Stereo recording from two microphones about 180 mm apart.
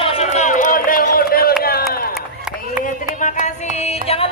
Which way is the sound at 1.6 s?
55° left (ahead or behind).